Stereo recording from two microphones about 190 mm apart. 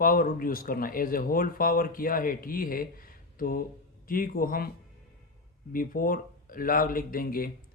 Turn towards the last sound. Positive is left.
turn(degrees=50)  # may be behind; listen again after turning